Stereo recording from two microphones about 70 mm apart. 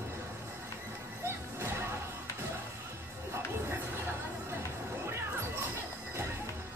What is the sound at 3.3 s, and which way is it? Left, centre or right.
Music, right.